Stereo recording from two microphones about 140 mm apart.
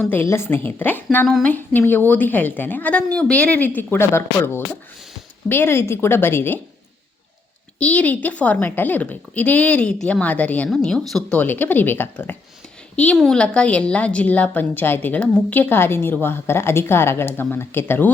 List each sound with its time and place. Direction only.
0.0 s a woman's voice: 15° left (ahead or behind)
7.8 s a woman's voice: 10° left (ahead or behind)